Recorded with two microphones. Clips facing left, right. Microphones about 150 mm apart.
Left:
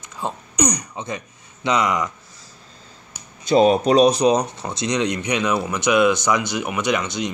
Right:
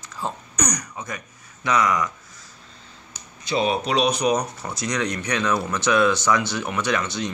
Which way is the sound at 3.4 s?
45° left (ahead or behind).